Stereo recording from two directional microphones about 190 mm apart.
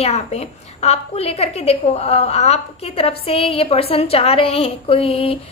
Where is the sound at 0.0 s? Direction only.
35° left (ahead or behind).